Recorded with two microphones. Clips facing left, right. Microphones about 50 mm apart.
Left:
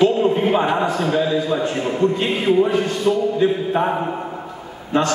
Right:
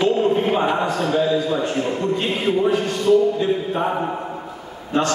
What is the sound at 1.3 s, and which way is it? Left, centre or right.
Music, centre.